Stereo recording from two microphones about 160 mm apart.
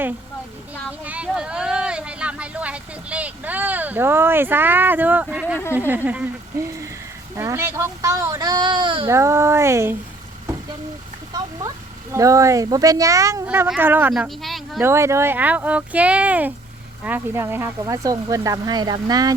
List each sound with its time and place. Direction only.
0.9 s a sound: 10° right (ahead or behind)
5.9 s speech: 10° right (ahead or behind)
7.3 s speech: 15° right (ahead or behind); by 9.0 s 30° right (ahead or behind)
9.0 s speech: 15° right (ahead or behind)
12.1 s speech: 20° right (ahead or behind)
14.1 s speech: centre (ahead or behind)
14.8 s speech: 15° right (ahead or behind)